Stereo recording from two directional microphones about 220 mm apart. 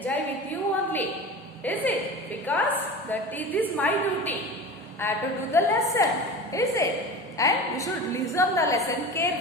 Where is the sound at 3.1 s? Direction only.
10° left (ahead or behind).